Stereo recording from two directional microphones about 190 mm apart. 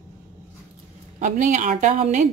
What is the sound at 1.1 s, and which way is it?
Speech, 40° right (ahead or behind).